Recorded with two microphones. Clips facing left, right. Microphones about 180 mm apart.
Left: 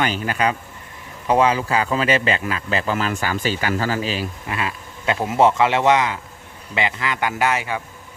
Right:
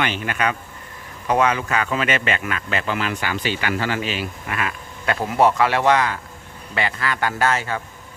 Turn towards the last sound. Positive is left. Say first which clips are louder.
# even
turn(degrees=15)  # may be behind; listen again after turning